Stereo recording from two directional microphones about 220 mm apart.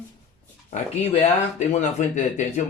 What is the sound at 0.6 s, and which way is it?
Speech, 30° left (ahead or behind).